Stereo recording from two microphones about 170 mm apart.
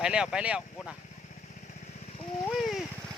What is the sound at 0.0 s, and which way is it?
Speech, 5° right (ahead or behind).